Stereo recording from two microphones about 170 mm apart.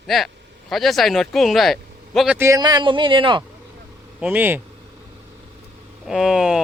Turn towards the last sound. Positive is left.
turn(degrees=0)  # may be behind; listen again after turning